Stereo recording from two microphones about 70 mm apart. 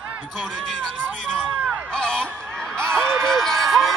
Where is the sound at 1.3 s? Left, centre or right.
Right.